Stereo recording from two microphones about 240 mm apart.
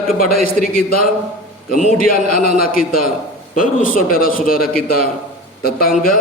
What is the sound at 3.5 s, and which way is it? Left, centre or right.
A man's voice, left.